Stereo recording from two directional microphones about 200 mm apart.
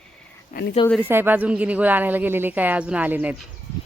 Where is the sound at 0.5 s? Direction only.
40° left (ahead or behind).